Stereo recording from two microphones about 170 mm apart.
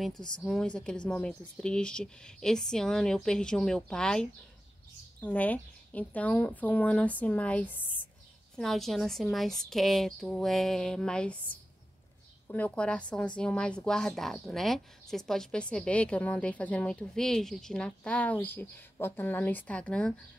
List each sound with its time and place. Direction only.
0.0 s a woman's voice: 5° left (ahead or behind)